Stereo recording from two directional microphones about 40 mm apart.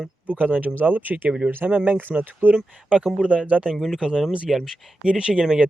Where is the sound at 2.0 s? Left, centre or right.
Right.